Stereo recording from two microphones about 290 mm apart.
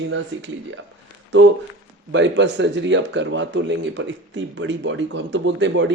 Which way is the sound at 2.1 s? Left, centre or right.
Right.